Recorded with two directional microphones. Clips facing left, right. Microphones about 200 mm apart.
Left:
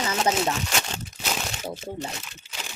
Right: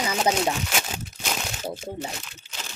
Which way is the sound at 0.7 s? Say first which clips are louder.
Even; centre (ahead or behind).